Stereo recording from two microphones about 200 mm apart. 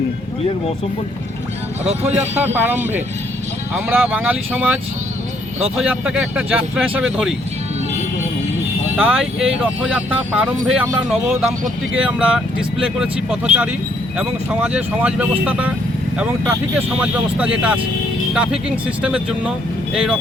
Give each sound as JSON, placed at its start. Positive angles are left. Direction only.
{"t": 1.8, "sound": "speech", "side_deg": -30}
{"t": 2.4, "sound": "speech", "side_deg": -10}
{"t": 9.0, "sound": "speech", "side_deg": -5}
{"t": 19.0, "sound": "speech", "side_deg": -5}